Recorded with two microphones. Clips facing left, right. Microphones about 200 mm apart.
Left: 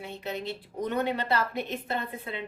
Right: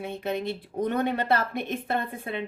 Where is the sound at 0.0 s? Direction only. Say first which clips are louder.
Right 5 dB; 55° right (ahead or behind).